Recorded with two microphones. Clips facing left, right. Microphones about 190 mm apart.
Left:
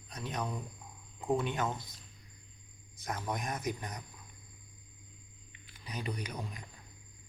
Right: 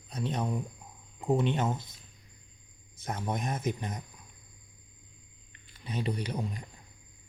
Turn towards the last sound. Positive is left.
turn(degrees=-30)  # may be behind; listen again after turning